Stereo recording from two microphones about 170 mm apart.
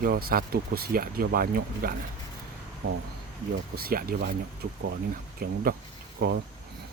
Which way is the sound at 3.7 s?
60° right (ahead or behind).